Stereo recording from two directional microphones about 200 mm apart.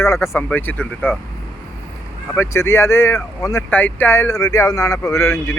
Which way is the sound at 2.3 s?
10° left (ahead or behind).